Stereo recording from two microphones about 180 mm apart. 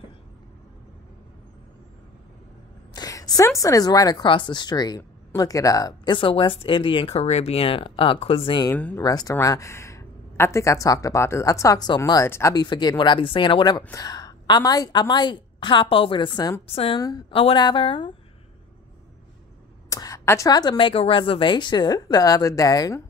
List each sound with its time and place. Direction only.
2.9 s speech: 20° left (ahead or behind)
8.7 s speech: 10° left (ahead or behind)
9.0 s speech: 20° left (ahead or behind)
16.7 s a woman's voice: 35° left (ahead or behind)
17.0 s speech: 20° left (ahead or behind)
19.9 s speech: 20° left (ahead or behind)